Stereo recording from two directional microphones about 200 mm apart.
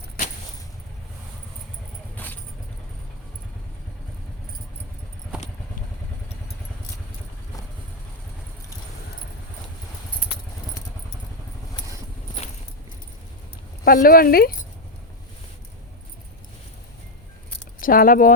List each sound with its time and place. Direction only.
2.1 s keys jangling: 10° left (ahead or behind)
13.8 s speech: 45° left (ahead or behind)
17.7 s speech: 45° left (ahead or behind)